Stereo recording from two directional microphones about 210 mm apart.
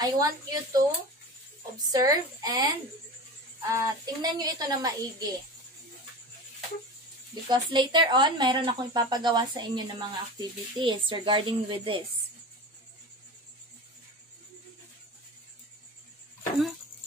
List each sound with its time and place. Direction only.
0.0 s speech: 20° right (ahead or behind)
3.7 s speech: 15° right (ahead or behind)
7.4 s speech: 20° right (ahead or behind)